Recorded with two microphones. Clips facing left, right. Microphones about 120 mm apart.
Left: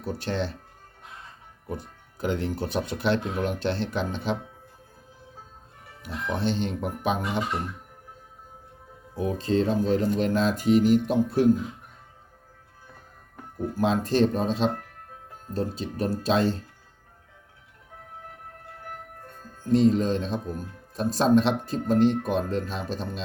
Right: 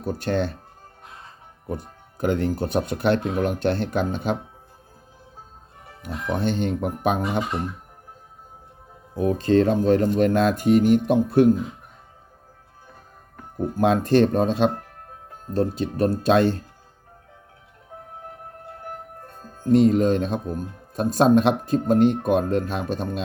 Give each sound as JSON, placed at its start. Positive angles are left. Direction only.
{"t": 0.0, "sound": "speech", "side_deg": -50}
{"t": 2.1, "sound": "speech", "side_deg": -50}
{"t": 6.0, "sound": "speech", "side_deg": -50}
{"t": 9.1, "sound": "speech", "side_deg": -60}
{"t": 13.7, "sound": "speech", "side_deg": -60}
{"t": 19.6, "sound": "speech", "side_deg": -55}